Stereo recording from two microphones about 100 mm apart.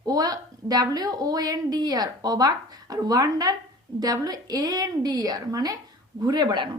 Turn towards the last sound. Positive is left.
turn(degrees=-50)  # may be behind; listen again after turning